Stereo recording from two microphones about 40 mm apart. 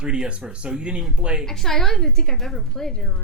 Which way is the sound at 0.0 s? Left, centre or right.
Right.